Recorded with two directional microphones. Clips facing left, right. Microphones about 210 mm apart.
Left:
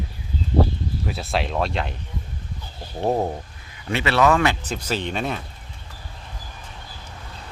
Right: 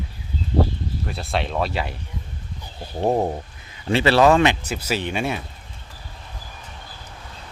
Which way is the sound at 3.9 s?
30° right (ahead or behind).